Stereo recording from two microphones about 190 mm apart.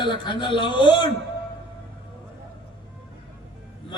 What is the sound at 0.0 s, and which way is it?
A man's voice, 25° left (ahead or behind).